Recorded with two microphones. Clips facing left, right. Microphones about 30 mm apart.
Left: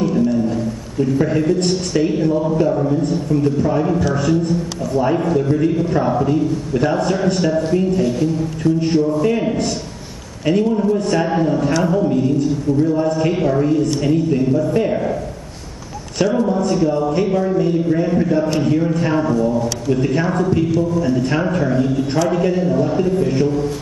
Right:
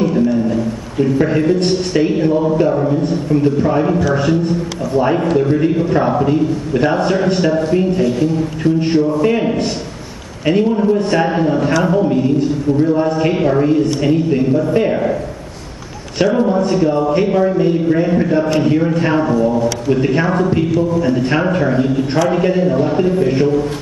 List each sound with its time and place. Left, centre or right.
0.0 s a sound: right
0.9 s a man's voice: right
16.2 s a man's voice: right